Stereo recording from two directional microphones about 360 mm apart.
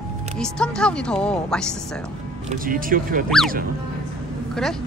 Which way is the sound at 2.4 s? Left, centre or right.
Right.